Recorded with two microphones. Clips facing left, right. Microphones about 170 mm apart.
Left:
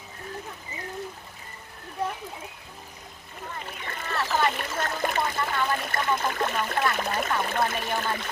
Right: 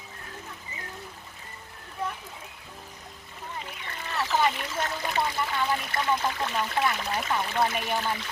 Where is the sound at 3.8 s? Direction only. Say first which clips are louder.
Left 2 dB; 50° left (ahead or behind).